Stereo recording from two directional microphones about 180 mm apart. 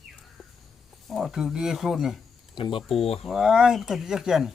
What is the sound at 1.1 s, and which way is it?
Speech, centre (ahead or behind).